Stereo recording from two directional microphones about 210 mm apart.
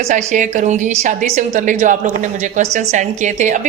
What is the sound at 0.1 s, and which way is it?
A woman's voice, 35° right (ahead or behind).